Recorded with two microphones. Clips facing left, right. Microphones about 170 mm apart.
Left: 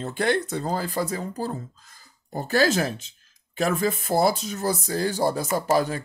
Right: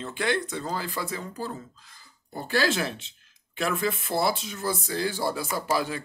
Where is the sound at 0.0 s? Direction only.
45° left (ahead or behind).